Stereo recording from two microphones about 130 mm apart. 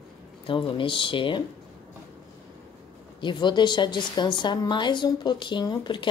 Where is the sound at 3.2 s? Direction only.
35° left (ahead or behind).